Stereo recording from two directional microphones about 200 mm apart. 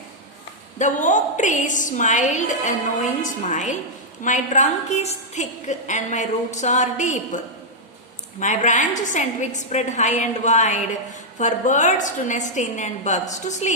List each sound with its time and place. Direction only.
0.8 s a woman's voice: 40° left (ahead or behind)
8.4 s a woman's voice: 40° left (ahead or behind)